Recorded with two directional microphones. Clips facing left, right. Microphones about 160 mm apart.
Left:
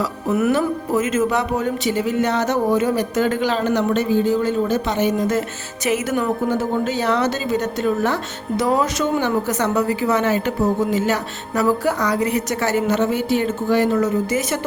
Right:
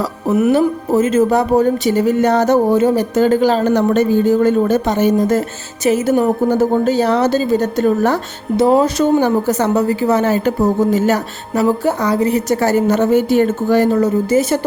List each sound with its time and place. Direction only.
0.5 s speech: 30° right (ahead or behind)
8.5 s speech: 30° right (ahead or behind)
11.6 s speech: 25° right (ahead or behind)